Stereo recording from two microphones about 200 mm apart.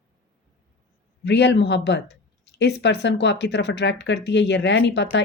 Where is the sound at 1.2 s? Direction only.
60° left (ahead or behind).